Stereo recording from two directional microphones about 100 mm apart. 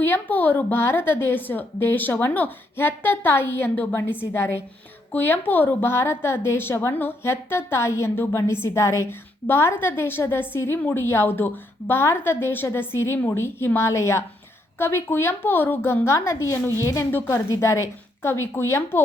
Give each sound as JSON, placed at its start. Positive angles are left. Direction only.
{"t": 0.0, "sound": "a woman's voice", "side_deg": 20}